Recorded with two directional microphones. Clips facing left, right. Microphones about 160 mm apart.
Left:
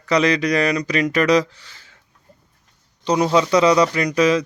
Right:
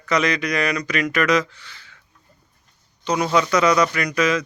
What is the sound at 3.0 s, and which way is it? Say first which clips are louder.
Speech: left 3 dB; 35° left (ahead or behind).